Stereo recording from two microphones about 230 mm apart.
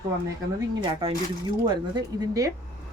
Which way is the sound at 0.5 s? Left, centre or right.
Right.